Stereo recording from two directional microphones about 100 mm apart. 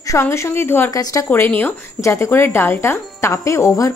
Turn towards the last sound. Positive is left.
turn(degrees=30)  # may be behind; listen again after turning